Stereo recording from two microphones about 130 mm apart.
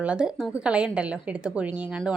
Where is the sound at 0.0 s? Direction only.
5° right (ahead or behind).